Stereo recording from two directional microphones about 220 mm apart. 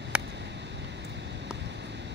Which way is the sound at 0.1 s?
5° right (ahead or behind).